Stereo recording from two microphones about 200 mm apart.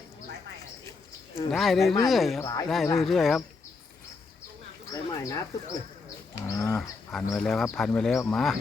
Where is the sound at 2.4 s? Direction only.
15° left (ahead or behind).